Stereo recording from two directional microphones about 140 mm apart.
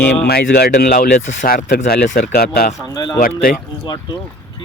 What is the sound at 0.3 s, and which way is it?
Speech, 90° left.